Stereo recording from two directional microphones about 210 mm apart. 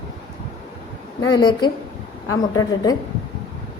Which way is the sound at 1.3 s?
20° left (ahead or behind).